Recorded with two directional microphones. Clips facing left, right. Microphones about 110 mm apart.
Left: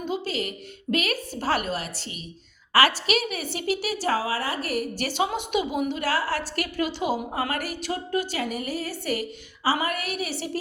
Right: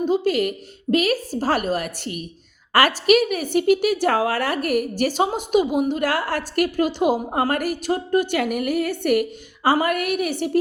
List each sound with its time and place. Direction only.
0.0 s a woman's voice: 50° right (ahead or behind)
0.9 s a woman's voice: 40° right (ahead or behind)